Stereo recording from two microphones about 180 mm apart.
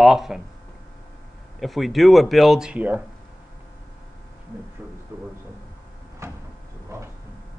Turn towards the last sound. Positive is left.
turn(degrees=-15)  # may be behind; listen again after turning